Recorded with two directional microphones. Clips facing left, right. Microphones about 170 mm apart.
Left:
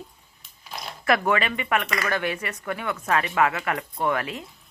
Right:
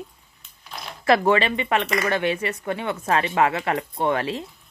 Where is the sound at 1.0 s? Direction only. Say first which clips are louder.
Right 4 dB; 30° right (ahead or behind).